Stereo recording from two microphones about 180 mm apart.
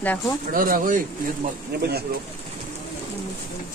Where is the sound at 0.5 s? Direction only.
50° right (ahead or behind).